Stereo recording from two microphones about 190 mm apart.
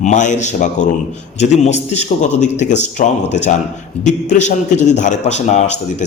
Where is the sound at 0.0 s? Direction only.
40° left (ahead or behind).